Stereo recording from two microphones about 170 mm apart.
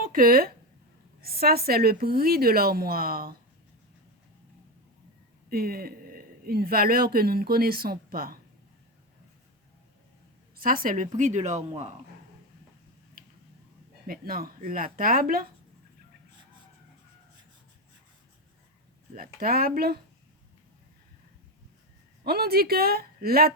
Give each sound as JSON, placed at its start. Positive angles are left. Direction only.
{"t": 0.0, "sound": "a woman's voice", "side_deg": -55}
{"t": 5.5, "sound": "speech", "side_deg": -60}
{"t": 10.6, "sound": "a woman's voice", "side_deg": -55}
{"t": 14.1, "sound": "a woman's voice", "side_deg": -60}
{"t": 19.1, "sound": "a woman's voice", "side_deg": -55}
{"t": 22.2, "sound": "a woman's voice", "side_deg": -65}